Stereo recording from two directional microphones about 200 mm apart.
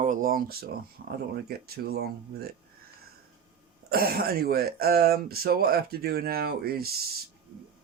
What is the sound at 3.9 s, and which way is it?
Speech, 50° right (ahead or behind).